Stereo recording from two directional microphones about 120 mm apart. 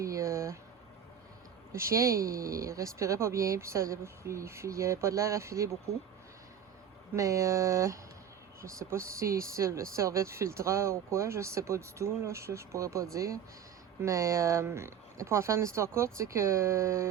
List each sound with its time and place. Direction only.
0.0 s a sound: 25° right (ahead or behind)
1.7 s speech: 25° right (ahead or behind)
7.1 s speech: 25° right (ahead or behind)